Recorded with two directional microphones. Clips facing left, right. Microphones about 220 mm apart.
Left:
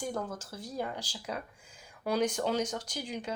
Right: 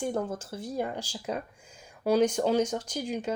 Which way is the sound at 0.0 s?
30° right (ahead or behind).